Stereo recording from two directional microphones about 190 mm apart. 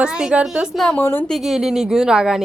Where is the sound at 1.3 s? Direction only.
Centre (ahead or behind).